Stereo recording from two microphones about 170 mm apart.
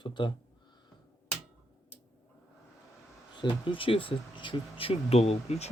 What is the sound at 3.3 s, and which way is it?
Speech, 30° left (ahead or behind).